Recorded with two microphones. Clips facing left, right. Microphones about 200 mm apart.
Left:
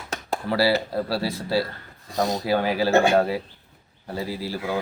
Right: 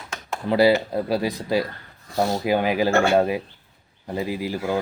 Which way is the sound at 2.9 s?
15° left (ahead or behind).